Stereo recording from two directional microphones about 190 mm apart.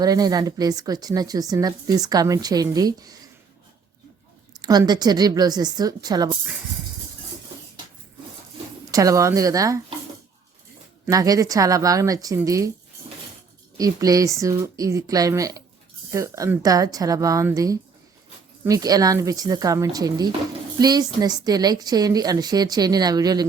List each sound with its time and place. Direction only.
0.0 s a woman's voice: 20° right (ahead or behind)
4.6 s a woman's voice: 20° right (ahead or behind)
8.9 s speech: 15° right (ahead or behind)
11.0 s speech: 20° right (ahead or behind)
13.7 s a woman's voice: 20° right (ahead or behind)